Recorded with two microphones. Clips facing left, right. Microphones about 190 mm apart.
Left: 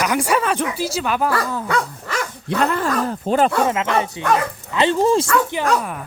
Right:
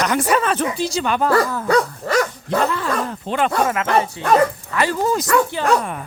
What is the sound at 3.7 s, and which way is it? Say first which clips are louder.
Speech: right 1 dB; 20° left (ahead or behind).